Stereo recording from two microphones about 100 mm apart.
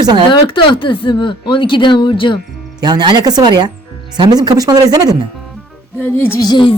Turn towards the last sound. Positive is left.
turn(degrees=45)  # may be behind; listen again after turning